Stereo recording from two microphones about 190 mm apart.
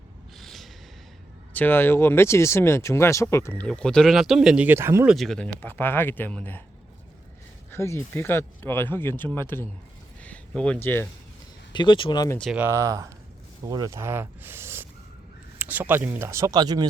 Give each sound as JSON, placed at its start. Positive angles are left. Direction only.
{"t": 0.3, "sound": "a sound", "side_deg": 0}
{"t": 1.5, "sound": "speech", "side_deg": 10}
{"t": 5.1, "sound": "speech", "side_deg": 0}
{"t": 7.7, "sound": "speech", "side_deg": 15}
{"t": 11.7, "sound": "speech", "side_deg": 25}
{"t": 12.4, "sound": "speech", "side_deg": 0}
{"t": 12.6, "sound": "speech", "side_deg": -15}